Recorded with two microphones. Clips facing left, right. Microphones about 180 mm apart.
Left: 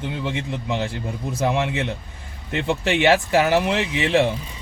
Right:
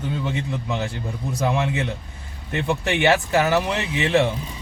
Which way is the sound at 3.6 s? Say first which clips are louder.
Left 2 dB; 15° left (ahead or behind).